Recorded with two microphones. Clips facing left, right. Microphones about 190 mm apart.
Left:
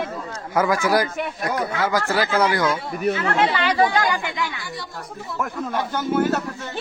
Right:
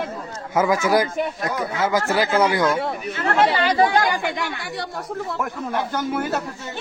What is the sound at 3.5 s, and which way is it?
Speech, 35° right (ahead or behind).